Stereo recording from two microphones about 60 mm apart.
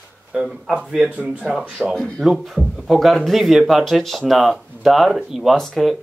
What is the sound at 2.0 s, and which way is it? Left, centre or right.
Speech, centre.